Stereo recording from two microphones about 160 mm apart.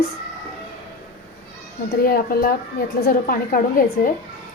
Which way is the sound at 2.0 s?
65° left (ahead or behind).